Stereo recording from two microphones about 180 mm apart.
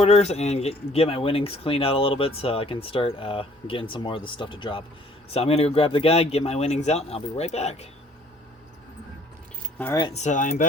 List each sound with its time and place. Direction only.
0.0 s speech: 35° left (ahead or behind)
9.7 s speech: 10° left (ahead or behind)
10.1 s speech: 40° left (ahead or behind)